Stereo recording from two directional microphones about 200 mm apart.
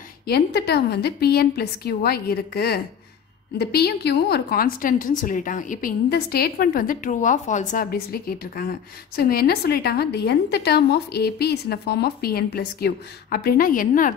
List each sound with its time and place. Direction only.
0.3 s a woman's voice: 55° left (ahead or behind)